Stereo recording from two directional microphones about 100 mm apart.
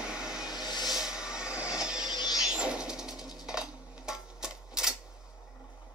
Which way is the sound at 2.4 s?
10° right (ahead or behind).